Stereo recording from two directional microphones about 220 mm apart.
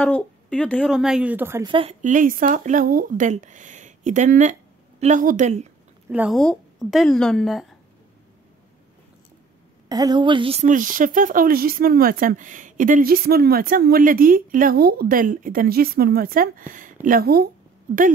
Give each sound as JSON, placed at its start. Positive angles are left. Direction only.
{"t": 0.0, "sound": "a woman's voice", "side_deg": 5}
{"t": 1.7, "sound": "speech", "side_deg": -25}
{"t": 6.0, "sound": "a woman's voice", "side_deg": -5}
{"t": 9.8, "sound": "speech", "side_deg": -15}